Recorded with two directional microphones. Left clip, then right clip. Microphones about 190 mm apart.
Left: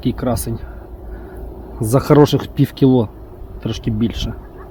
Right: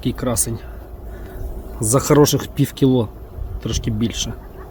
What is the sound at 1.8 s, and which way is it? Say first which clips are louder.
Speech: left 2 dB; 20° left (ahead or behind).